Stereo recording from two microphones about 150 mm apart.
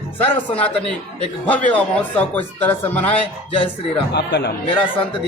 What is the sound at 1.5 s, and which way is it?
Speech, 10° left (ahead or behind).